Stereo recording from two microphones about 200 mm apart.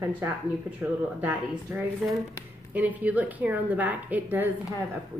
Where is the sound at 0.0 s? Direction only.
10° right (ahead or behind).